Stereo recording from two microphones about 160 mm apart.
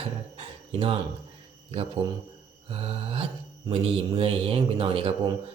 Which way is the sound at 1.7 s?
35° right (ahead or behind).